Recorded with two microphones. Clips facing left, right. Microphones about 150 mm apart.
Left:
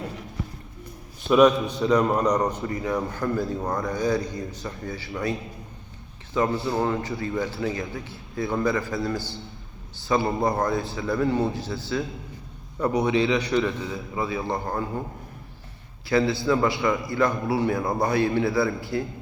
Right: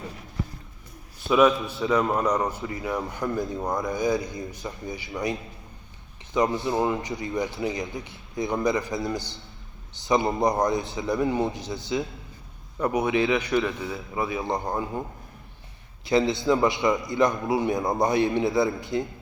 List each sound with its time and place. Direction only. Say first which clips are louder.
1.5 s a man's voice: left 3 dB; 10° right (ahead or behind)
6.3 s a man's voice: even; 15° right (ahead or behind)
16.0 s a man's voice: even; 20° right (ahead or behind)